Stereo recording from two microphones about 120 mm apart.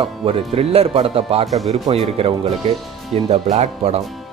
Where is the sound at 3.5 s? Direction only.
70° right (ahead or behind).